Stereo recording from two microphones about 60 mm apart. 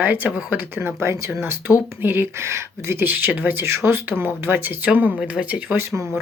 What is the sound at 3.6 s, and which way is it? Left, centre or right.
Speech, right.